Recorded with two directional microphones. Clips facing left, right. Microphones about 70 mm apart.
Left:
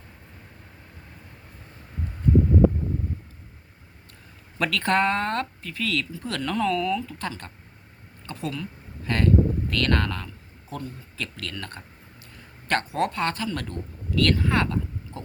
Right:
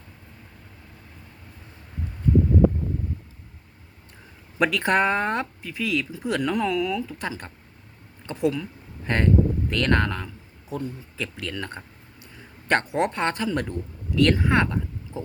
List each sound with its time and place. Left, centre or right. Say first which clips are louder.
4.5 s speech: right 2 dB; centre